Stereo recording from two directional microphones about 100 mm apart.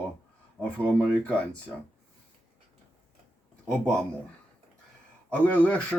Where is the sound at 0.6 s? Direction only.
15° right (ahead or behind).